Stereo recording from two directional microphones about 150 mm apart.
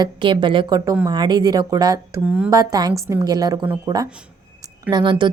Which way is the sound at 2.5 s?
25° right (ahead or behind).